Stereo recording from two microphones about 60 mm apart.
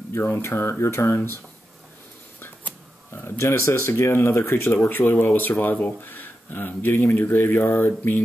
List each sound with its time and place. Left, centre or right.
0.1 s speech: left
3.1 s speech: left
4.7 s speech: left